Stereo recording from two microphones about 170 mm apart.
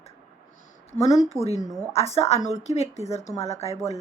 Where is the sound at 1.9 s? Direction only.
35° left (ahead or behind).